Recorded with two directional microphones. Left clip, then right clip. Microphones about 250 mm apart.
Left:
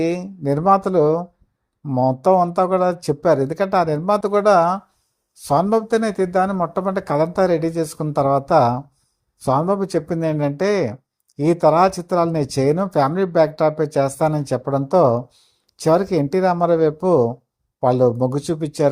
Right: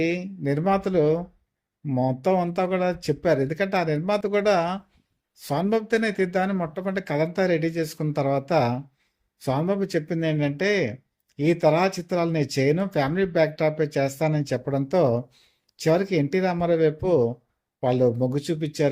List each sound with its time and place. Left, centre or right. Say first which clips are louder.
0.0 s speech: left 4 dB; centre